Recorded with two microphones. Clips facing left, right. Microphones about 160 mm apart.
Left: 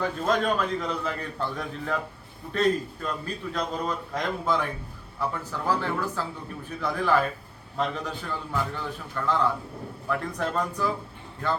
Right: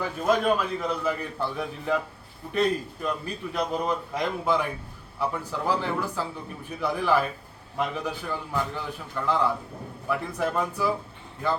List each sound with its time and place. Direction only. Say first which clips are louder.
0.3 s a man's voice: right 3 dB; 10° right (ahead or behind)